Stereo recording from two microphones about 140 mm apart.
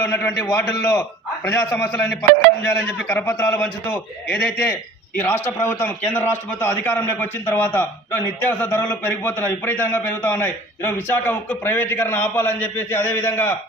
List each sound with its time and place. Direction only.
0.0 s a man's voice: 15° left (ahead or behind)
3.1 s a man's voice: 20° left (ahead or behind)